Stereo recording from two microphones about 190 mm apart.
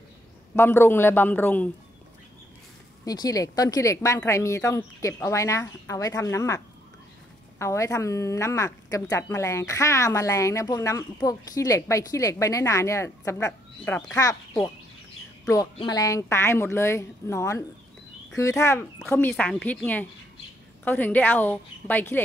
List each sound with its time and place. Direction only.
0.6 s speech: 10° left (ahead or behind)
3.1 s speech: 20° left (ahead or behind)